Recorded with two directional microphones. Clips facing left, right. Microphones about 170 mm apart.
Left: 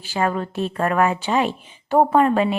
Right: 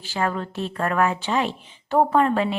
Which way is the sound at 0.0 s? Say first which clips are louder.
Left 3 dB; 15° left (ahead or behind).